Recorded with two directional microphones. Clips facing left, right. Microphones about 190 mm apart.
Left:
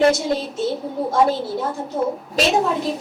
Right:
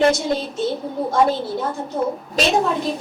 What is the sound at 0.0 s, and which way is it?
A woman's voice, centre (ahead or behind).